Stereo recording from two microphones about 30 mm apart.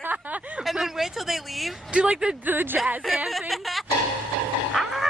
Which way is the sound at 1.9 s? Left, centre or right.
Right.